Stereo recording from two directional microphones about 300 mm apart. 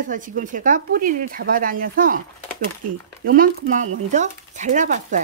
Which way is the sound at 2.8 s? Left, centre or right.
Right.